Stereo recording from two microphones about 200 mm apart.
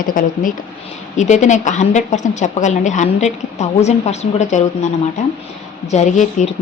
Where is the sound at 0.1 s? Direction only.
40° left (ahead or behind).